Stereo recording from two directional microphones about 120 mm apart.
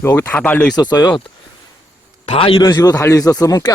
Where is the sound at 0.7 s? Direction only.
35° left (ahead or behind).